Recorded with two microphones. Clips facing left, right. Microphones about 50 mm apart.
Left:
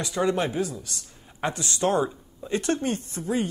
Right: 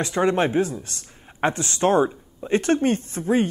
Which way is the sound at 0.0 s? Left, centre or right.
Right.